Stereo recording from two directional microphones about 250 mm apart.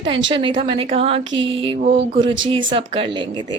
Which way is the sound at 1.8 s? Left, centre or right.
Right.